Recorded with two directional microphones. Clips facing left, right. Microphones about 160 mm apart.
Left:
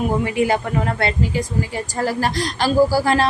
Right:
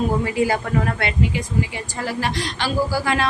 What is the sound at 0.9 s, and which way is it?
A woman's voice, 35° left (ahead or behind).